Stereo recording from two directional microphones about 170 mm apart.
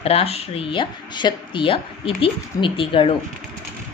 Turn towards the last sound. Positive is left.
turn(degrees=30)  # may be behind; listen again after turning